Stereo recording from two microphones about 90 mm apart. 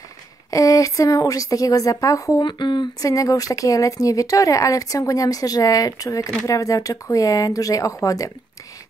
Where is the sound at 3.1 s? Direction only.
40° left (ahead or behind).